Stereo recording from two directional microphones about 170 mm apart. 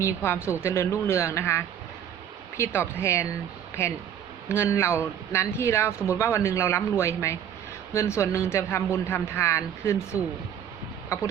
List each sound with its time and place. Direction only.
0.0 s speech: 15° left (ahead or behind)
4.4 s speech: 15° left (ahead or behind)